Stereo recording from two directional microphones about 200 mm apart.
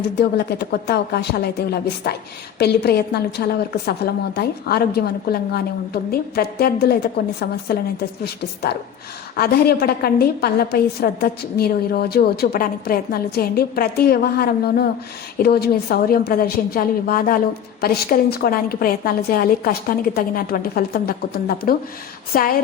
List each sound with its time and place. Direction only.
0.2 s a woman's voice: 50° left (ahead or behind)